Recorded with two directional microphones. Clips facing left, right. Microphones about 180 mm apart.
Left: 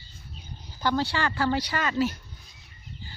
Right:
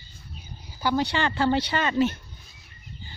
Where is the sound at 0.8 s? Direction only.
15° right (ahead or behind).